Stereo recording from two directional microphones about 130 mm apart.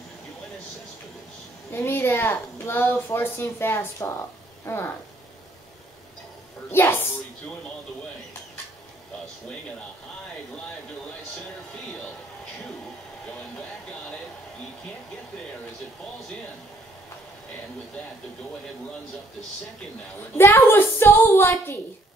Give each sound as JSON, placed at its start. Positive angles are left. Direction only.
{"t": 1.7, "sound": "a woman's voice", "side_deg": 20}
{"t": 6.7, "sound": "a woman's voice", "side_deg": 15}
{"t": 20.3, "sound": "a woman's voice", "side_deg": 15}